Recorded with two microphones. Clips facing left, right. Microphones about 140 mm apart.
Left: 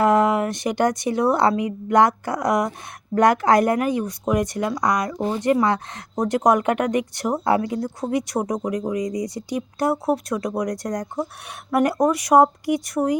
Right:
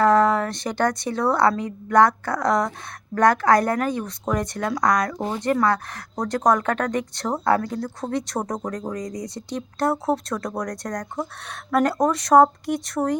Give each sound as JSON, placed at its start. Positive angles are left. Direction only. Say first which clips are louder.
{"t": 0.0, "sound": "speech", "louder": "even", "side_deg": 15}